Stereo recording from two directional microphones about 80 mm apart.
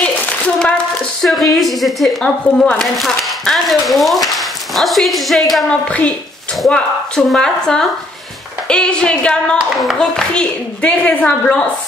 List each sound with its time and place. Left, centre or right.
1.2 s speech: centre
5.7 s a woman's voice: centre
6.7 s a woman's voice: centre